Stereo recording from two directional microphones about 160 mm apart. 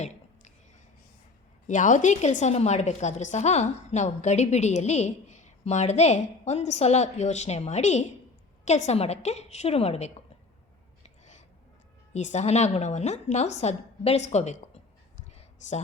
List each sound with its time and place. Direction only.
1.6 s a woman's voice: 50° left (ahead or behind)
12.1 s a woman's voice: 45° left (ahead or behind)
15.6 s a woman's voice: 45° left (ahead or behind)